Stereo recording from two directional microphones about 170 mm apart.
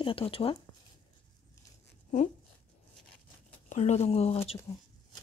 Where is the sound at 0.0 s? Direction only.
30° left (ahead or behind).